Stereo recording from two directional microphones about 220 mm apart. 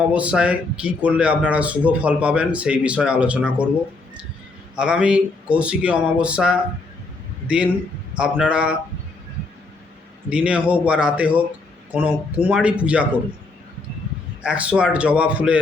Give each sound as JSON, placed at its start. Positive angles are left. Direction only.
{"t": 0.1, "sound": "speech", "side_deg": -5}
{"t": 4.8, "sound": "a man's voice", "side_deg": -5}
{"t": 10.2, "sound": "speech", "side_deg": -5}
{"t": 14.4, "sound": "speech", "side_deg": -5}